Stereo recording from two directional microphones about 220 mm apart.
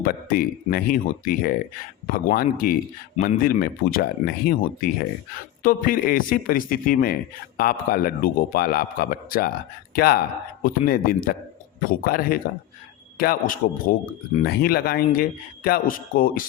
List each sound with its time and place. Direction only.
0.0 s a man's voice: 40° left (ahead or behind)